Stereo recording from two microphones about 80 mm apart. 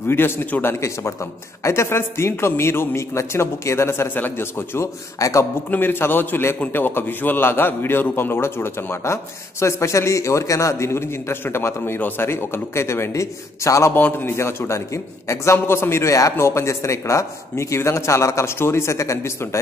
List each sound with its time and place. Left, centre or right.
0.0 s a man's voice: left
5.2 s a man's voice: left
5.7 s a man's voice: left
13.9 s a man's voice: left